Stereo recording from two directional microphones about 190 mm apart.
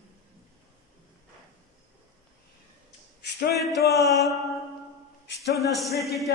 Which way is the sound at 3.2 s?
60° left (ahead or behind).